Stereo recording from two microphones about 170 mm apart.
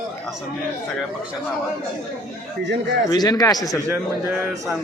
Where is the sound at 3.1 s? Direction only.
25° left (ahead or behind).